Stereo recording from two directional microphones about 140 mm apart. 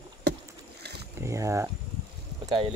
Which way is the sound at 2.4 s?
40° right (ahead or behind).